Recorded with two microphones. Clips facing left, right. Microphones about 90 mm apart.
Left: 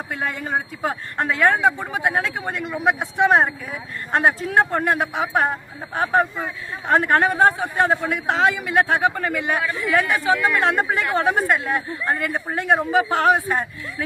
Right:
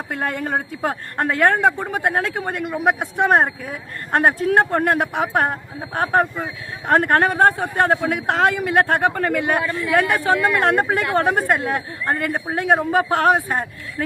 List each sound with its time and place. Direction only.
0.1 s speech: 50° right (ahead or behind)